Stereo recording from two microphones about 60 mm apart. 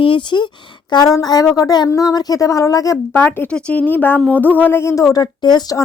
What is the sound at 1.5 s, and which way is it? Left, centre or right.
A woman's voice, left.